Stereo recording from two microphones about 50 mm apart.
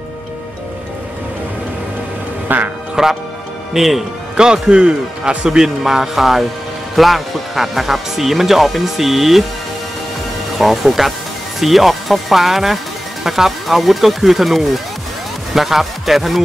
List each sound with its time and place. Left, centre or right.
2.4 s music: right
3.0 s a man's voice: centre
4.4 s a man's voice: centre
10.6 s speech: centre